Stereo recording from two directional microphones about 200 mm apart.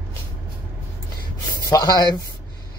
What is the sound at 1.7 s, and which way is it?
Speech, 15° left (ahead or behind).